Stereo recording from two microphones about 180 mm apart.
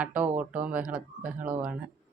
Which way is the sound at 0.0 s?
10° right (ahead or behind).